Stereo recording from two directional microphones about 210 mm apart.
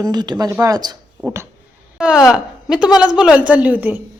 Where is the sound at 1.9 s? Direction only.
5° right (ahead or behind).